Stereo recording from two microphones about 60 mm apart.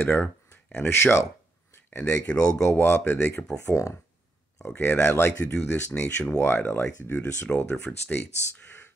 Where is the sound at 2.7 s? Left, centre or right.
Left.